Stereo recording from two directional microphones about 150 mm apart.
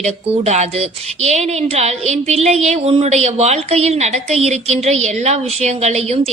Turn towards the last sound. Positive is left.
turn(degrees=-45)  # may be behind; listen again after turning